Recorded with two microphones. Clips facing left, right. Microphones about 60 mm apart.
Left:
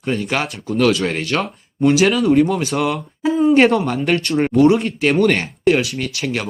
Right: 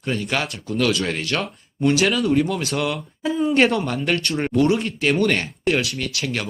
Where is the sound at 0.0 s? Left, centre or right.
Centre.